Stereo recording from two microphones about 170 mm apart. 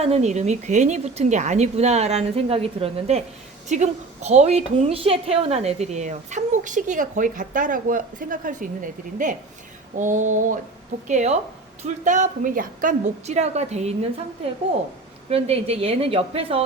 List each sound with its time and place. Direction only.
0.0 s a woman's voice: 40° right (ahead or behind)
15.3 s a woman's voice: 35° right (ahead or behind)